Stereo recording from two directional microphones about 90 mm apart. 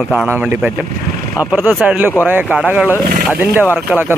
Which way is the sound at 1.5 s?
20° right (ahead or behind).